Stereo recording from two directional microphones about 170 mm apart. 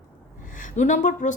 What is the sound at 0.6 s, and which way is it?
Speech, 45° left (ahead or behind).